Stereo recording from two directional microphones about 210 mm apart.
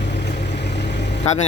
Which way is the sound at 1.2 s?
30° left (ahead or behind).